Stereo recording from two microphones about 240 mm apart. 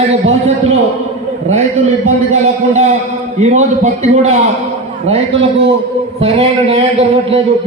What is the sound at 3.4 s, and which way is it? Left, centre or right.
A man's voice, right.